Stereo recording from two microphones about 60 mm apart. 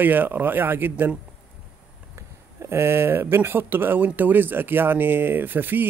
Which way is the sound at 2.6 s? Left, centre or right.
Right.